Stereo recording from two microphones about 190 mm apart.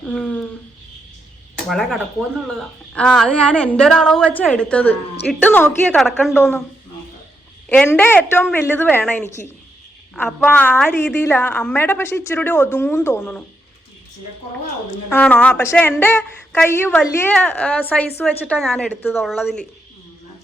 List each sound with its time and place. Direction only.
0.0 s a sound: 5° left (ahead or behind)
1.6 s a woman's voice: centre (ahead or behind)
6.3 s a woman's voice: 10° left (ahead or behind)
7.7 s a woman's voice: 10° left (ahead or behind)
15.1 s a woman's voice: 10° left (ahead or behind)